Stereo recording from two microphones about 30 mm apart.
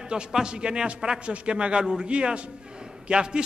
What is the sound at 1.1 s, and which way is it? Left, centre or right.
A man's voice, right.